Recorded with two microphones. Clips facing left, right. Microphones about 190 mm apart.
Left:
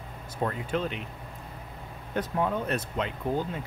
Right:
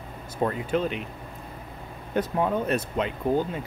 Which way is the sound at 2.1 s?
15° right (ahead or behind).